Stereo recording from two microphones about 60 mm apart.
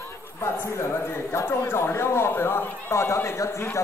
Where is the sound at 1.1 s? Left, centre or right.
Left.